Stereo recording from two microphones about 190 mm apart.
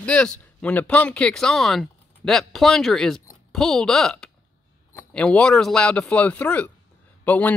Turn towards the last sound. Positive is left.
turn(degrees=10)  # may be behind; listen again after turning